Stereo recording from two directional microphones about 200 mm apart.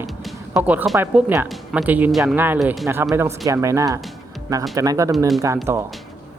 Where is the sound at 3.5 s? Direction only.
15° right (ahead or behind).